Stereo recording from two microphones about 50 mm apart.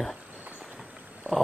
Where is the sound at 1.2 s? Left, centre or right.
Right.